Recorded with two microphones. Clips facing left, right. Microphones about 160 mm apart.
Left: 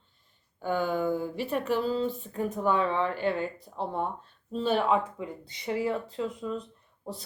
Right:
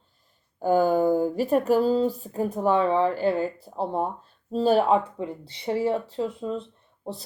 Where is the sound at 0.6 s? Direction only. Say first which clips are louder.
Right 8 dB; 40° right (ahead or behind).